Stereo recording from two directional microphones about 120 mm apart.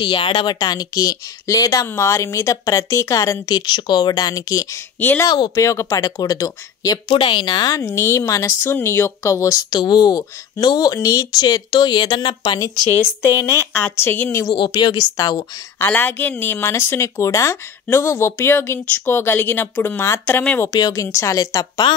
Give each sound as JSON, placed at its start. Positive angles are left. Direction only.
{"t": 0.0, "sound": "speech", "side_deg": 45}
{"t": 7.1, "sound": "speech", "side_deg": 45}
{"t": 7.9, "sound": "speech", "side_deg": 20}
{"t": 13.4, "sound": "speech", "side_deg": 20}
{"t": 14.5, "sound": "speech", "side_deg": 40}
{"t": 15.8, "sound": "speech", "side_deg": 15}
{"t": 20.7, "sound": "speech", "side_deg": 30}